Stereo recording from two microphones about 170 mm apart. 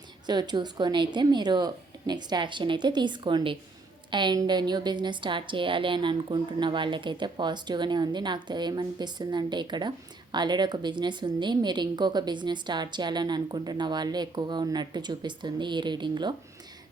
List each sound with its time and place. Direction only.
0.3 s a woman's voice: 25° right (ahead or behind)